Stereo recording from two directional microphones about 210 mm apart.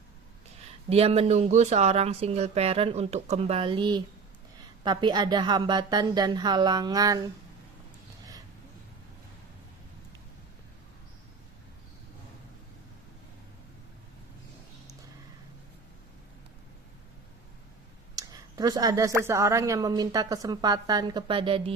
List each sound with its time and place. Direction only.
0.9 s speech: 30° right (ahead or behind)
18.2 s speech: 15° right (ahead or behind)